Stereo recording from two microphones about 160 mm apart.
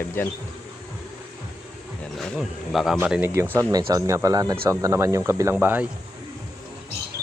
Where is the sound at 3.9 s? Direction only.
20° right (ahead or behind).